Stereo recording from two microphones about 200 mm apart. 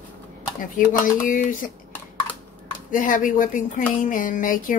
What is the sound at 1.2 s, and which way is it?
Speech, 45° left (ahead or behind).